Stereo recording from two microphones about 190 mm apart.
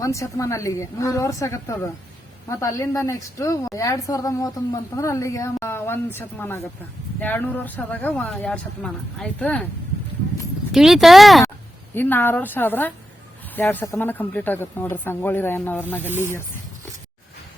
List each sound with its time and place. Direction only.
0.0 s a woman's voice: 15° left (ahead or behind)
10.7 s speech: centre (ahead or behind)
11.9 s a woman's voice: 10° left (ahead or behind)